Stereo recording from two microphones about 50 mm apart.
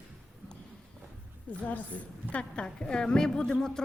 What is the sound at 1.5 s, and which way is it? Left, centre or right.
Speech, left.